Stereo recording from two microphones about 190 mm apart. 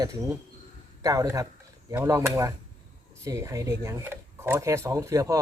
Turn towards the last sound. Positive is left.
turn(degrees=-15)  # may be behind; listen again after turning